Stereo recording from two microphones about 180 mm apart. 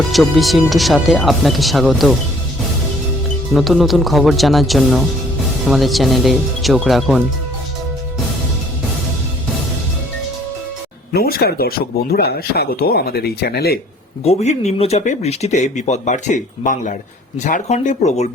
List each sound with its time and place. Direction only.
0.1 s speech: centre (ahead or behind)
3.5 s speech: centre (ahead or behind)
11.1 s speech: 60° left (ahead or behind)
14.3 s speech: 40° left (ahead or behind)